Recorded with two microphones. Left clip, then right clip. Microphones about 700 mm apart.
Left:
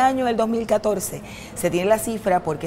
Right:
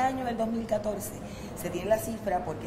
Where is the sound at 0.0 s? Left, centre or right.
Left.